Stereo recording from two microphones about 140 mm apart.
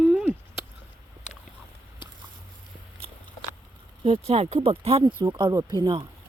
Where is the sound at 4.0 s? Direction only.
45° right (ahead or behind); by 6.0 s 30° right (ahead or behind).